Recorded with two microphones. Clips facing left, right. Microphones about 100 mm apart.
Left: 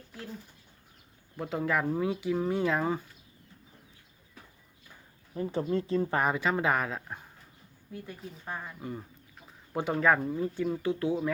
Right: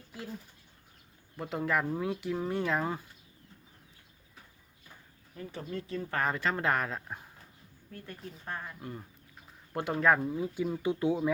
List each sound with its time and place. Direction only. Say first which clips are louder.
0.1 s speech: right 1 dB; 5° right (ahead or behind)
1.4 s speech: left 1 dB; centre (ahead or behind)
5.3 s a woman's voice: left 9 dB; 30° left (ahead or behind)
6.1 s speech: right 1 dB; 10° left (ahead or behind); by 10.9 s 10° right (ahead or behind)